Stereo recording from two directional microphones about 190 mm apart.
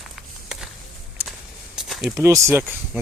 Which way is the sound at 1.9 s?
Centre (ahead or behind).